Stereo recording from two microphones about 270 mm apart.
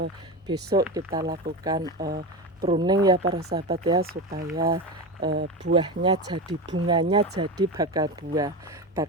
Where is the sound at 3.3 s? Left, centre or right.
Right.